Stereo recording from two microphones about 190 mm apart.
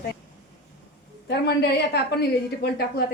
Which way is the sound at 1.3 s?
60° left (ahead or behind).